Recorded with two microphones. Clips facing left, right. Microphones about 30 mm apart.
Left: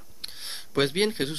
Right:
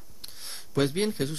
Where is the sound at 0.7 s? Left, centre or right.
Left.